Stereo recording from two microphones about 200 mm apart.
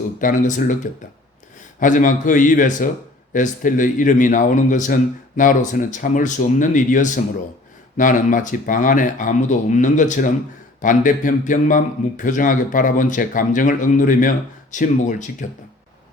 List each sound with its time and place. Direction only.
0.2 s a man's voice: 40° left (ahead or behind)
1.8 s a man's voice: 40° left (ahead or behind)